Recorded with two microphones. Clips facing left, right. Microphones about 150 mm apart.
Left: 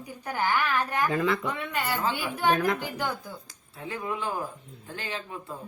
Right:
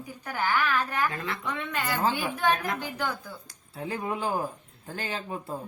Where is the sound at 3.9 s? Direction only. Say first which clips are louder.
Right 2 dB; 35° right (ahead or behind).